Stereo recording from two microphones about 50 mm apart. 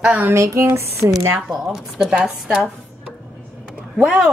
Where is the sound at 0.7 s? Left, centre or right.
Right.